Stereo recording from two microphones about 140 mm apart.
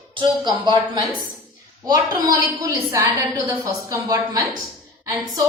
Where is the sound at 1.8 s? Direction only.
25° right (ahead or behind).